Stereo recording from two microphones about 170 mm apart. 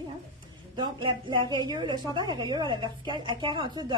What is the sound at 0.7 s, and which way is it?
A woman's voice, 30° right (ahead or behind).